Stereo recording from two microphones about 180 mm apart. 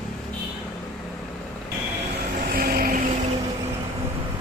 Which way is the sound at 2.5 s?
55° right (ahead or behind).